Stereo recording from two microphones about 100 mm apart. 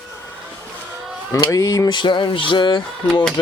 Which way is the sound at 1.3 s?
35° left (ahead or behind).